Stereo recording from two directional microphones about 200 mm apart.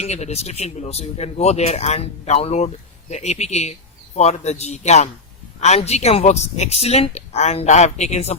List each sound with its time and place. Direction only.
0.0 s speech: 35° left (ahead or behind)